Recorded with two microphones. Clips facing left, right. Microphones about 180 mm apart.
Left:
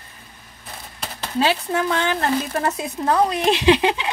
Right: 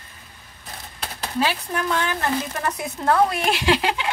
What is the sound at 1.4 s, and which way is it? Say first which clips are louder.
Speech: left 4 dB; 25° left (ahead or behind).